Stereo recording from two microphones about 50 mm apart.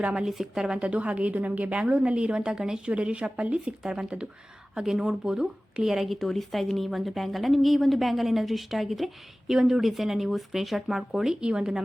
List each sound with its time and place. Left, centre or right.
0.0 s a woman's voice: centre
0.3 s speech: centre
0.9 s a woman's voice: right; by 6.1 s centre
6.1 s speech: centre